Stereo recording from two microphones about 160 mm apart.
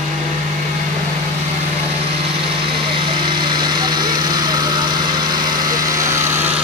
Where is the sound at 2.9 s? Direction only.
30° right (ahead or behind).